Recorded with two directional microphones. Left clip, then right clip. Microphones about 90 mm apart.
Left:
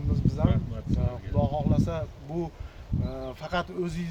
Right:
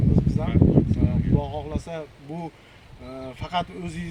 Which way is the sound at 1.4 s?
35° left (ahead or behind).